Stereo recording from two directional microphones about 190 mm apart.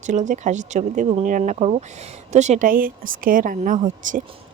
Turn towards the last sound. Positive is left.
turn(degrees=-45)  # may be behind; listen again after turning